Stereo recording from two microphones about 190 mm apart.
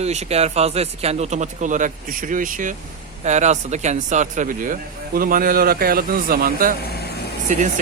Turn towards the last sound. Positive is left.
turn(degrees=-40)  # may be behind; listen again after turning